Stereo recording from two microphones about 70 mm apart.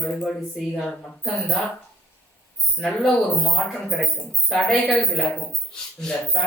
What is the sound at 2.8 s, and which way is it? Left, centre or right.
Speech, centre.